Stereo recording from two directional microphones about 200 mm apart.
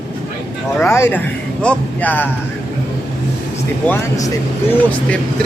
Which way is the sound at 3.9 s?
15° left (ahead or behind).